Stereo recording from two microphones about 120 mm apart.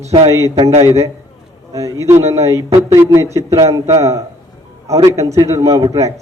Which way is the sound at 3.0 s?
20° right (ahead or behind).